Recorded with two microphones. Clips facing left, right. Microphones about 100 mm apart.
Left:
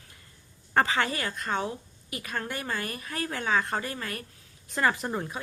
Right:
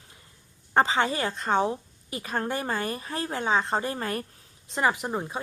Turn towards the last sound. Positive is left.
turn(degrees=-15)  # may be behind; listen again after turning